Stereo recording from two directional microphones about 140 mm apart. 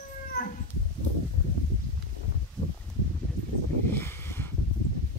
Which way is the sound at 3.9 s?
15° left (ahead or behind).